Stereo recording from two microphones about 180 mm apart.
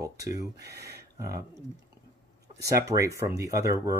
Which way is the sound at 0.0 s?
15° right (ahead or behind).